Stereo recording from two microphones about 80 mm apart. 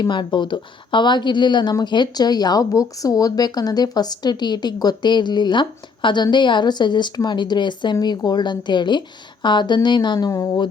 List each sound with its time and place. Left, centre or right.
0.0 s a woman's voice: left
8.0 s a woman's voice: left